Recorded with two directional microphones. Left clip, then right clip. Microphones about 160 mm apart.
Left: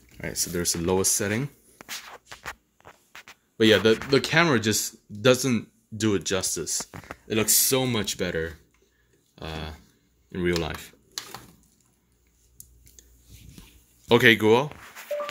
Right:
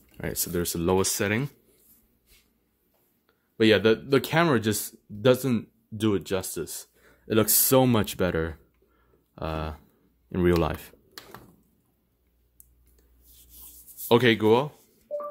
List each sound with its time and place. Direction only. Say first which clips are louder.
0.2 s speech: left 2 dB; 30° right (ahead or behind)
0.5 s speech: right 1 dB; 15° right (ahead or behind)
3.5 s speech: left 1 dB; 5° right (ahead or behind)
7.2 s speech: even; 40° right (ahead or behind)
14.0 s speech: left 3 dB; 10° right (ahead or behind)